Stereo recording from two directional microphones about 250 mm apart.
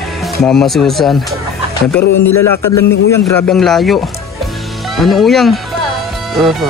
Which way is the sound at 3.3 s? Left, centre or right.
Centre.